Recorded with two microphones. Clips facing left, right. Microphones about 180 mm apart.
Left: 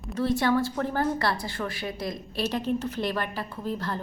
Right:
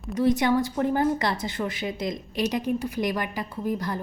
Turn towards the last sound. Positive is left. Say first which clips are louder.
# right 3 dB
turn(degrees=-15)  # may be behind; listen again after turning